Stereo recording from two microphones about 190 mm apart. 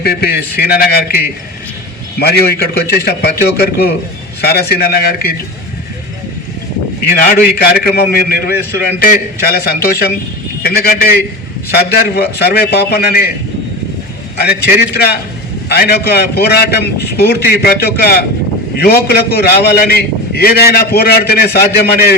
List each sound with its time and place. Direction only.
0.0 s a man's voice: 55° left (ahead or behind)
7.1 s a man's voice: 50° left (ahead or behind)
14.3 s a man's voice: 60° left (ahead or behind)